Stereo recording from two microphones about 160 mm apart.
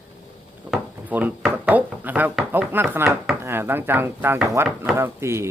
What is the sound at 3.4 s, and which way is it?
Speech, 15° right (ahead or behind).